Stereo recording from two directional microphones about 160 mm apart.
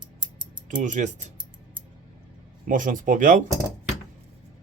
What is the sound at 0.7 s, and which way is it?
Speech, 50° right (ahead or behind).